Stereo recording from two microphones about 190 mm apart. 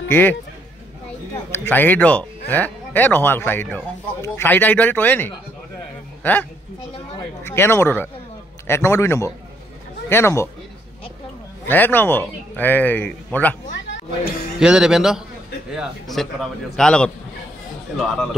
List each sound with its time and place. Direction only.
0.1 s speech: 10° left (ahead or behind)
7.4 s speech: 15° left (ahead or behind)
11.7 s speech: 10° left (ahead or behind)
13.7 s speech: 70° left (ahead or behind)
14.6 s a man's voice: 5° right (ahead or behind)